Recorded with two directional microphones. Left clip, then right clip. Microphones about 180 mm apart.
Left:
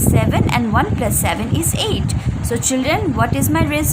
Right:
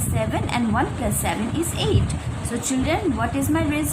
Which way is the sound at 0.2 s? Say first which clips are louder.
Left 1 dB; 50° left (ahead or behind).